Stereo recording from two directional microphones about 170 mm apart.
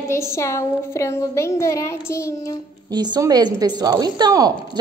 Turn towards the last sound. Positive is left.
turn(degrees=-25)  # may be behind; listen again after turning